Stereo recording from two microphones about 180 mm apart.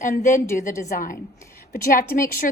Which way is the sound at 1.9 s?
50° left (ahead or behind).